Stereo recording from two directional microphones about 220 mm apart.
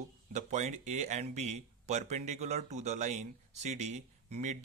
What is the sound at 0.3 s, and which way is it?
Speech, 35° right (ahead or behind).